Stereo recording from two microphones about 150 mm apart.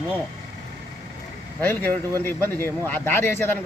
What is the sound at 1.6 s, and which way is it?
Speech, 15° left (ahead or behind).